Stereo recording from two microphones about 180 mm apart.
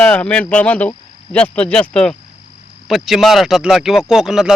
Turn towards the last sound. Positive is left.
turn(degrees=0)  # may be behind; listen again after turning